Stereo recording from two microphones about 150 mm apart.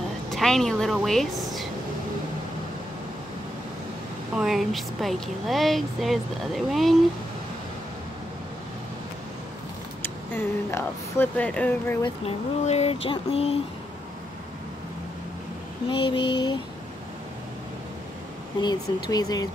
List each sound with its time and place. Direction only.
0.3 s a woman's voice: centre (ahead or behind)
4.4 s speech: centre (ahead or behind)
10.0 s speech: 15° left (ahead or behind)
12.0 s speech: 45° left (ahead or behind)
15.9 s speech: 35° left (ahead or behind)
18.6 s speech: 30° left (ahead or behind)